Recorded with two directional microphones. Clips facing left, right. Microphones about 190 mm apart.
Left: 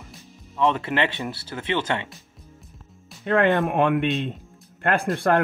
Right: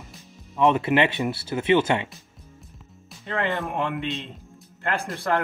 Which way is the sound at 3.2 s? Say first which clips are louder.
Left 7 dB; 55° left (ahead or behind).